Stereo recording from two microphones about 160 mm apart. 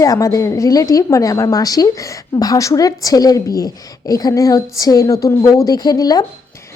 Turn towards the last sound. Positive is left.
turn(degrees=25)  # may be behind; listen again after turning